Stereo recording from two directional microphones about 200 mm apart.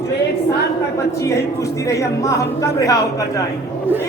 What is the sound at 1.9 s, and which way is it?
Speech, 15° left (ahead or behind).